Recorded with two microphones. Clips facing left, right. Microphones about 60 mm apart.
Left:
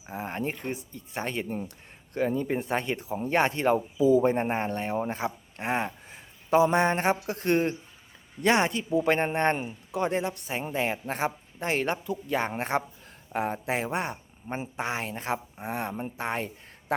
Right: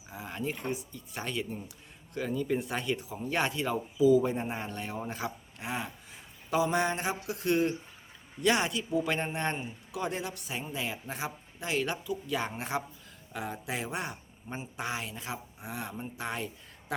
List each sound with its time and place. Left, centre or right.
0.1 s a woman's voice: left
6.5 s a sound: left
8.4 s a woman's voice: left